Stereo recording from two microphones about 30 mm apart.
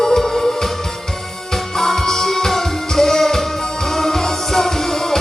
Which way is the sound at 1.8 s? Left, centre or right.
Centre.